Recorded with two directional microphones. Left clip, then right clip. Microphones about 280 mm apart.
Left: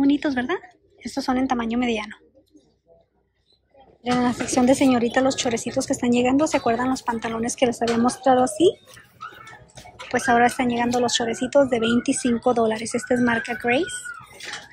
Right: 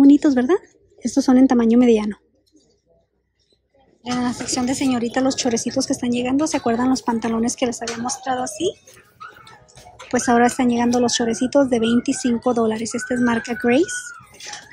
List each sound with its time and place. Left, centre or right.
0.0 s a woman's voice: centre
4.0 s speech: centre
9.9 s speech: centre